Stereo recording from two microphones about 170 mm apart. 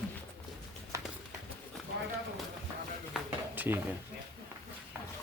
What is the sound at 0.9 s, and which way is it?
Music, 20° right (ahead or behind).